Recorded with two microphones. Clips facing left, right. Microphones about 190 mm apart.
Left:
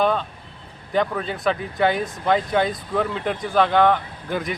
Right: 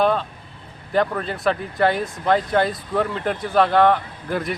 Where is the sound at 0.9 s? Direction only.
Centre (ahead or behind).